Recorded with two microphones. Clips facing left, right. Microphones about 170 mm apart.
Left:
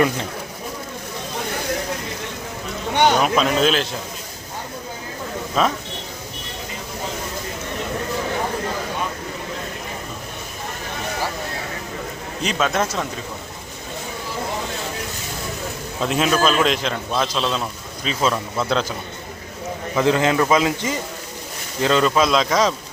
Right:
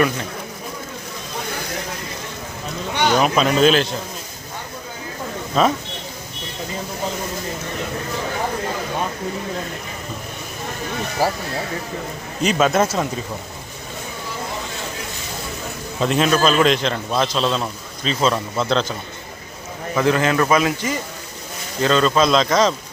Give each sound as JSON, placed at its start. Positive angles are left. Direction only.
{"t": 3.2, "sound": "a man's voice", "side_deg": 0}
{"t": 5.6, "sound": "a man's voice", "side_deg": 0}
{"t": 12.4, "sound": "a man's voice", "side_deg": -5}
{"t": 16.0, "sound": "a man's voice", "side_deg": 5}
{"t": 20.0, "sound": "speech", "side_deg": 20}